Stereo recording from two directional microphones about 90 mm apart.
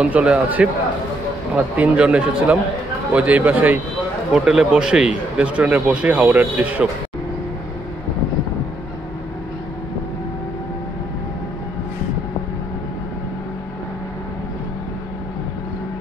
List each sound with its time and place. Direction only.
0.0 s speech: 15° right (ahead or behind)